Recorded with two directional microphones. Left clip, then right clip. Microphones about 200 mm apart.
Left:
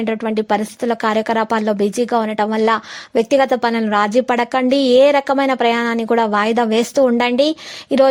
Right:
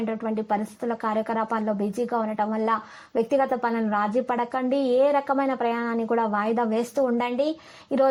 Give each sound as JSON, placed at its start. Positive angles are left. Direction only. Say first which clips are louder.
{"t": 0.0, "sound": "speech", "louder": "left 9 dB", "side_deg": 40}